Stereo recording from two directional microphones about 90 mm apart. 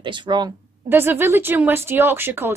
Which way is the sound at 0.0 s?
60° right (ahead or behind).